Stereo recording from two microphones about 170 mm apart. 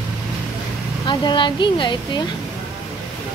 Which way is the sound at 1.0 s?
30° left (ahead or behind).